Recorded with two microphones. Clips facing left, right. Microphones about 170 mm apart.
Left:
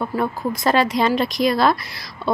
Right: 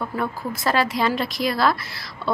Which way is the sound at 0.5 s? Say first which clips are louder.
Left 4 dB; 20° left (ahead or behind).